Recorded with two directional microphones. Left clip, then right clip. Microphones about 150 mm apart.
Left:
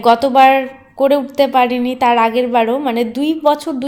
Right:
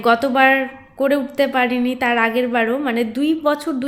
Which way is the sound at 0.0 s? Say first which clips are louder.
Left 5 dB; 15° left (ahead or behind).